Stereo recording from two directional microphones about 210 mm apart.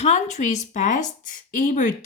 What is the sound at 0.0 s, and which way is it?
Speech, 35° left (ahead or behind).